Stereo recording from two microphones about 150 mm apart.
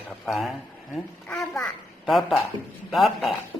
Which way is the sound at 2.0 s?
Centre (ahead or behind).